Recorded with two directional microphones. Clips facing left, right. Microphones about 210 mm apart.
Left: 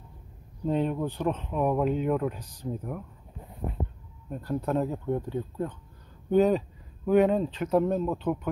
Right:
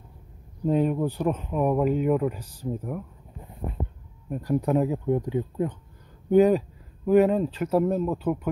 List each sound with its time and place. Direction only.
0.7 s speech: 5° right (ahead or behind)
4.3 s speech: 15° right (ahead or behind)